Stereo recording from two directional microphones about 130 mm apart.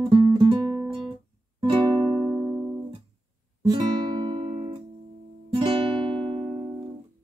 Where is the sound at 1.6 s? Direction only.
40° right (ahead or behind).